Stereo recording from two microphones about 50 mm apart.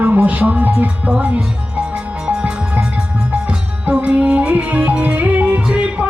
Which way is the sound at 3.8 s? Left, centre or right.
Right.